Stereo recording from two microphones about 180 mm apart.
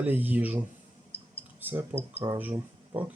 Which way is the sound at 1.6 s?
10° right (ahead or behind).